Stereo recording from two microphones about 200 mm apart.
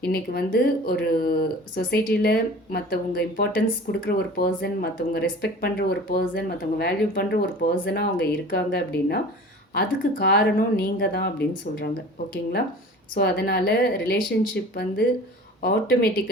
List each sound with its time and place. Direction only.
0.0 s speech: 50° left (ahead or behind)
13.1 s speech: 50° left (ahead or behind)